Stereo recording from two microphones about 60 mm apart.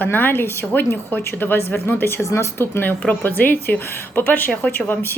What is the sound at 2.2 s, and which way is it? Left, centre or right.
Speech, left.